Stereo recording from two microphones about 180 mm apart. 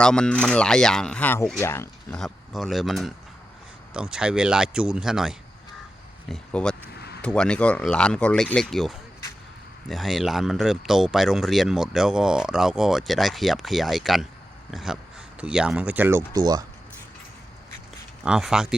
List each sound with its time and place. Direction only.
0.0 s speech: 5° left (ahead or behind)
2.1 s speech: centre (ahead or behind)
6.9 s a sound: 65° left (ahead or behind)
7.2 s speech: 5° left (ahead or behind); by 16.6 s 20° right (ahead or behind)
18.3 s speech: 5° right (ahead or behind)